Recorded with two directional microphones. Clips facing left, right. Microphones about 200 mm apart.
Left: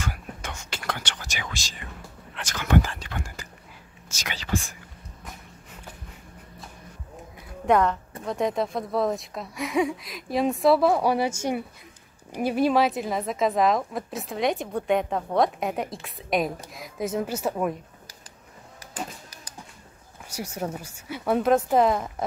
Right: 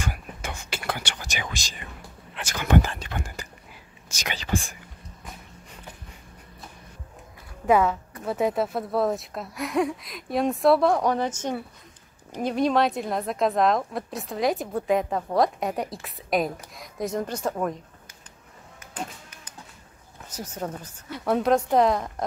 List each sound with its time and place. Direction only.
0.0 s whispering: 10° right (ahead or behind)
2.3 s a sound: 10° right (ahead or behind)
4.1 s whispering: 15° right (ahead or behind)
7.6 s a woman's voice: 5° right (ahead or behind)
20.2 s a woman's voice: 10° left (ahead or behind)